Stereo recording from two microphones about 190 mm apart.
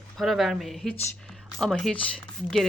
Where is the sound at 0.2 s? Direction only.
Centre (ahead or behind).